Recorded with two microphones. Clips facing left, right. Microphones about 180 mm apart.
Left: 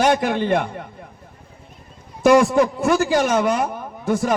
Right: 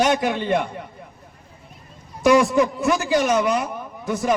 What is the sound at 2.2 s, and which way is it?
A man's voice, 50° left (ahead or behind).